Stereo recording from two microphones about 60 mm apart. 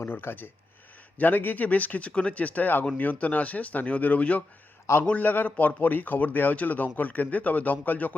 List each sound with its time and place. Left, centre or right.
0.0 s a man's voice: left